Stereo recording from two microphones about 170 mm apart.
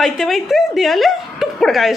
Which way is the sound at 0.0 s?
Centre (ahead or behind).